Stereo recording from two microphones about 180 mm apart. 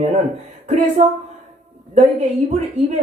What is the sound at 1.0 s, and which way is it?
Speech, 45° right (ahead or behind).